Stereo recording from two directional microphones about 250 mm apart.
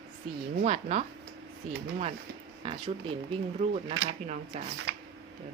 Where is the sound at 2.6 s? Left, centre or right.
Centre.